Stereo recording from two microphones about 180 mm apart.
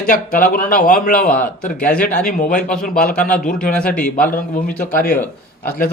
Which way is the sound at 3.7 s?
5° left (ahead or behind).